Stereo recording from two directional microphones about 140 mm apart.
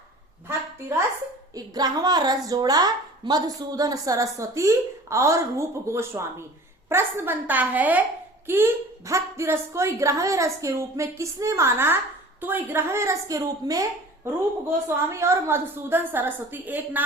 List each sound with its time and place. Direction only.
0.4 s a woman's voice: 20° right (ahead or behind)
14.8 s a woman's voice: 20° right (ahead or behind)